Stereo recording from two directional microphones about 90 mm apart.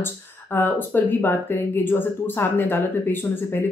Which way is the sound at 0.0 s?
25° left (ahead or behind).